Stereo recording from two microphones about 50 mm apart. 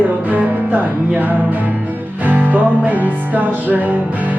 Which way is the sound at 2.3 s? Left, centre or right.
Right.